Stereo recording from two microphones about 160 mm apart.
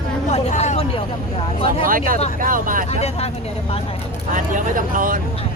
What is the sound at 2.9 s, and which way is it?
Speech, 40° left (ahead or behind).